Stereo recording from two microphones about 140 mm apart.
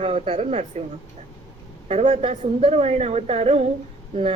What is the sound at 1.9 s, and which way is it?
A woman's voice, 50° right (ahead or behind).